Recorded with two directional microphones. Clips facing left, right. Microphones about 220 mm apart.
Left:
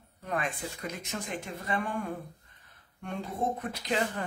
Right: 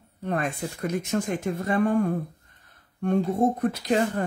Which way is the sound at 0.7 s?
50° right (ahead or behind).